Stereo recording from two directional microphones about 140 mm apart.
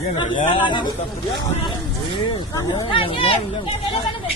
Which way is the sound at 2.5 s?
30° left (ahead or behind).